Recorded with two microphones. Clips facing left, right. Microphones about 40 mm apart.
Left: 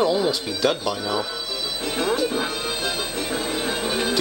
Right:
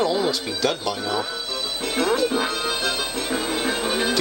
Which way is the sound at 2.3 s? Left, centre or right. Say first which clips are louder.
Right 2 dB; centre.